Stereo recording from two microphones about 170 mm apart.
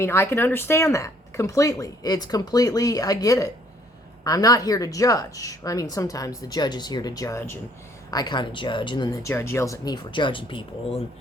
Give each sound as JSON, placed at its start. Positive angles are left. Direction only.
{"t": 0.0, "sound": "speech", "side_deg": 15}